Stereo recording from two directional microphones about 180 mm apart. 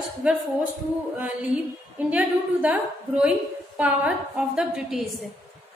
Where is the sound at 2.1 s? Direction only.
5° right (ahead or behind).